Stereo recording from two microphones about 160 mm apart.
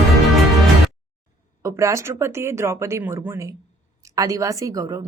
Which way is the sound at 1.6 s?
20° right (ahead or behind).